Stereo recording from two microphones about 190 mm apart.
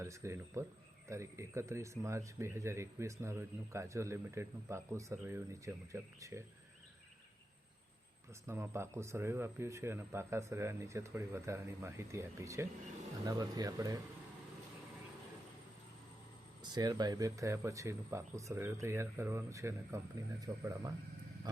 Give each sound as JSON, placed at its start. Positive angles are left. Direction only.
{"t": 0.0, "sound": "speech", "side_deg": -15}
{"t": 8.4, "sound": "speech", "side_deg": -15}
{"t": 16.7, "sound": "speech", "side_deg": -20}